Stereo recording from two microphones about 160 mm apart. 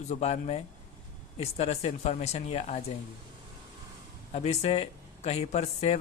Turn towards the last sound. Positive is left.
turn(degrees=45)  # may be behind; listen again after turning